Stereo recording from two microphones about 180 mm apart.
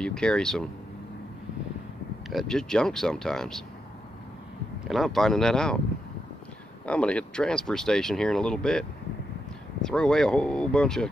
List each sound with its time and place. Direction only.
0.0 s speech: 5° left (ahead or behind)
2.2 s speech: centre (ahead or behind)
4.8 s speech: centre (ahead or behind)
6.9 s speech: 5° left (ahead or behind)